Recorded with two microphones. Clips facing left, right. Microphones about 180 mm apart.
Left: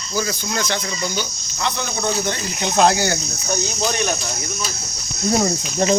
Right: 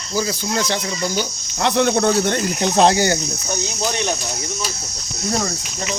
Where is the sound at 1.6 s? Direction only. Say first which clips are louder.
Right 8 dB; 70° right (ahead or behind).